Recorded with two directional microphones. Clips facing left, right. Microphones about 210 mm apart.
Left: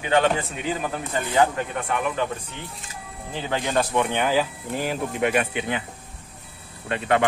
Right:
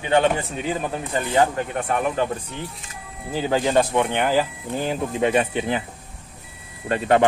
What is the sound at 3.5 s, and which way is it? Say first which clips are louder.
Speech: right 4 dB; 25° right (ahead or behind).